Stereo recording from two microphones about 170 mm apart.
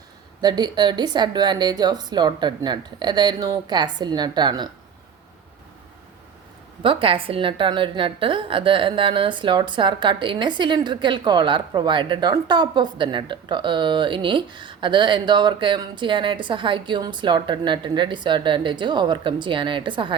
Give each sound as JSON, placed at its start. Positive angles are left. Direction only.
{"t": 0.4, "sound": "a woman's voice", "side_deg": -25}
{"t": 6.8, "sound": "a woman's voice", "side_deg": -30}